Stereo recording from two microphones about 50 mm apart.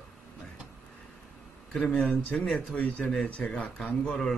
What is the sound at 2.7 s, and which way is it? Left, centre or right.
Speech, left.